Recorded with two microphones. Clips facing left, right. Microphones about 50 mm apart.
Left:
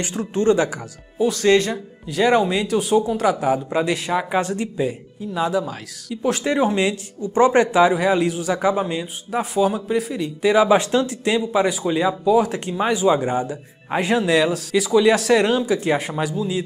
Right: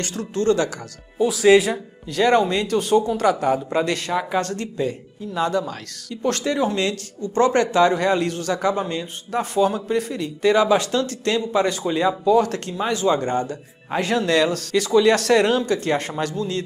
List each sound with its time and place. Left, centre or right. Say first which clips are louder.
0.0 s speech: left 2 dB; centre
1.1 s speech: right 2 dB; centre
2.0 s speech: even; centre
6.4 s speech: left 4 dB; left